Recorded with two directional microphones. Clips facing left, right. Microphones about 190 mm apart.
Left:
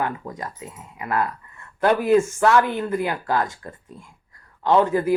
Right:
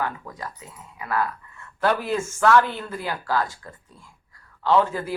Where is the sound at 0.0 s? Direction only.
20° left (ahead or behind).